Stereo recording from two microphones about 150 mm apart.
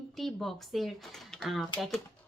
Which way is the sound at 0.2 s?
Centre (ahead or behind).